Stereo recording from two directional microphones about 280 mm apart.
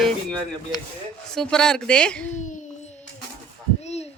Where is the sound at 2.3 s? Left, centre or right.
Left.